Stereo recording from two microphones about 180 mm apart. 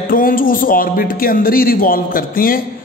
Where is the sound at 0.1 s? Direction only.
50° left (ahead or behind).